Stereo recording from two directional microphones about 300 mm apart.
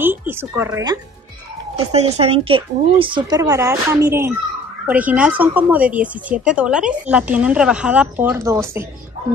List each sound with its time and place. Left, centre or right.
0.0 s speech: centre
1.8 s speech: centre